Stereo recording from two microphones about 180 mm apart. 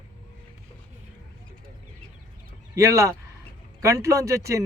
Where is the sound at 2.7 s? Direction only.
15° right (ahead or behind).